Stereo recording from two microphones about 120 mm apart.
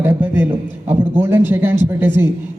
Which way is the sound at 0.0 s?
15° right (ahead or behind).